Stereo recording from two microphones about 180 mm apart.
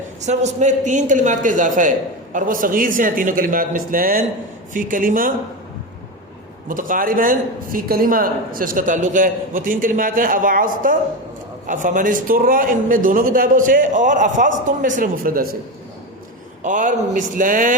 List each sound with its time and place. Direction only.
0.2 s speech: 40° right (ahead or behind)
6.7 s speech: 50° right (ahead or behind)
16.6 s speech: 45° right (ahead or behind)